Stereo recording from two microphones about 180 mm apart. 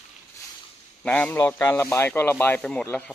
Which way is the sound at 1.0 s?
5° left (ahead or behind).